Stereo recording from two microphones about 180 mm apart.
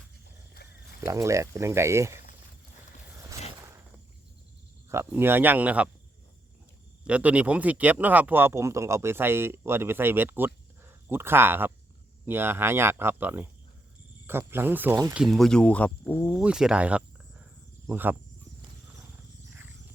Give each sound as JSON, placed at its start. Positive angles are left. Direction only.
{"t": 1.0, "sound": "speech", "side_deg": -15}
{"t": 4.9, "sound": "speech", "side_deg": -15}
{"t": 7.0, "sound": "speech", "side_deg": -5}
{"t": 15.1, "sound": "speech", "side_deg": 0}
{"t": 16.4, "sound": "cricket", "side_deg": -5}